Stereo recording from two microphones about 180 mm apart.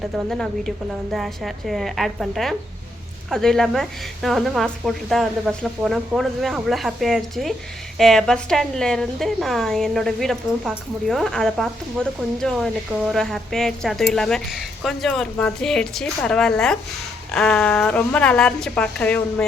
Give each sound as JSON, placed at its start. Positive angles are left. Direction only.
{"t": 0.0, "sound": "a woman's voice", "side_deg": 0}